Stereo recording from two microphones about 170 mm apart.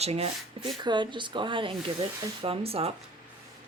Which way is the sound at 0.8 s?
25° right (ahead or behind).